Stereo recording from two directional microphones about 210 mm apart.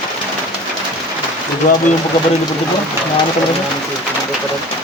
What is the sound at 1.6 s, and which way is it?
Speech, 40° left (ahead or behind).